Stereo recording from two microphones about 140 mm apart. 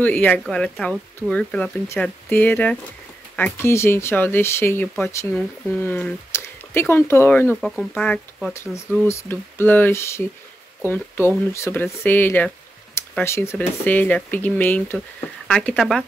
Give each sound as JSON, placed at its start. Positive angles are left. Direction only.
{"t": 0.0, "sound": "speech", "side_deg": 10}
{"t": 15.5, "sound": "speech", "side_deg": 5}